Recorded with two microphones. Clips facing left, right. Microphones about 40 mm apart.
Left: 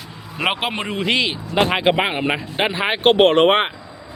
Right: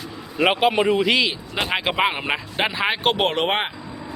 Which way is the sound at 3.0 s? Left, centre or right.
Left.